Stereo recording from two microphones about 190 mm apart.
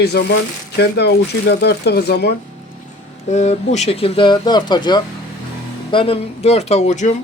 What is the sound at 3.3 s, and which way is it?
Speech, 35° left (ahead or behind).